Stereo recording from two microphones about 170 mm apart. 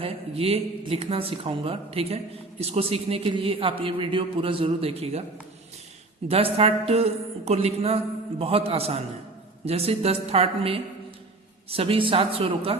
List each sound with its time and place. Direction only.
0.0 s speech: 35° right (ahead or behind)
6.2 s speech: 35° right (ahead or behind)